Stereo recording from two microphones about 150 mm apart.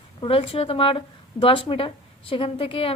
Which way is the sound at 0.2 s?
40° left (ahead or behind).